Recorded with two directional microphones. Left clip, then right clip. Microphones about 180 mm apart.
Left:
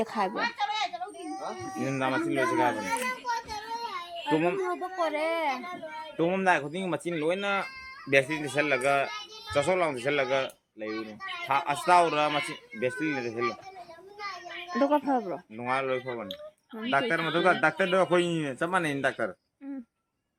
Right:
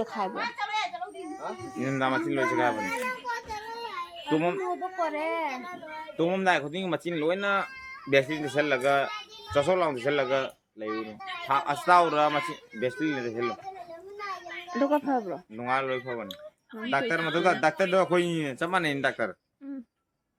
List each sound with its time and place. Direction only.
0.0 s speech: 20° left (ahead or behind)
0.3 s a sound: 10° right (ahead or behind)
1.4 s speech: 35° right (ahead or behind)
1.8 s children playing: 10° right (ahead or behind)
5.1 s a child's voice: 65° left (ahead or behind)
6.1 s speech: 5° right (ahead or behind)
11.5 s a man's voice: 5° right (ahead or behind)
14.7 s speech: 15° left (ahead or behind)
15.5 s a man's voice: 5° right (ahead or behind)